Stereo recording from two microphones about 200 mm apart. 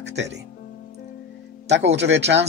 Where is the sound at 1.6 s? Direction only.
60° right (ahead or behind).